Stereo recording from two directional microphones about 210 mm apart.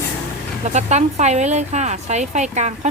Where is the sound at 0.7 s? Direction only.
35° right (ahead or behind).